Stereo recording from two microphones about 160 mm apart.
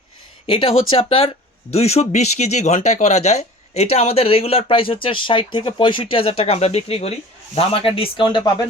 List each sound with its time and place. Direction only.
0.4 s speech: 35° left (ahead or behind)